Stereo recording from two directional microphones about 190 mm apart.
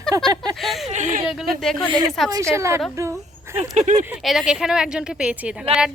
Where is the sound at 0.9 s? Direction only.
40° right (ahead or behind).